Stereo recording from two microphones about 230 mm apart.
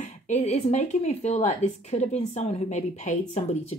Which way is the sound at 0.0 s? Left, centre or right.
Left.